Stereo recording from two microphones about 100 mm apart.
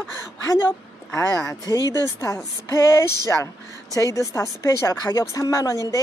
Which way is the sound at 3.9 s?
35° left (ahead or behind).